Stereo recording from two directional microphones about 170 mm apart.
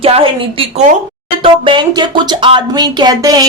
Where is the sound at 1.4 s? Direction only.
30° right (ahead or behind).